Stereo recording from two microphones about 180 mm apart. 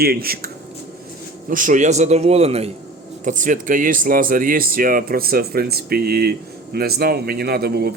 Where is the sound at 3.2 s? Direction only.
45° right (ahead or behind).